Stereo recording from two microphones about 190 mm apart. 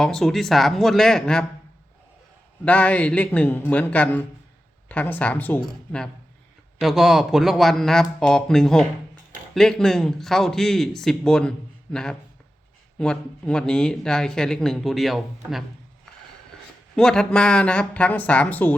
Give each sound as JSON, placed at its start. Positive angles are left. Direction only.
{"t": 0.0, "sound": "speech", "side_deg": 0}
{"t": 2.6, "sound": "speech", "side_deg": 5}
{"t": 16.9, "sound": "speech", "side_deg": 5}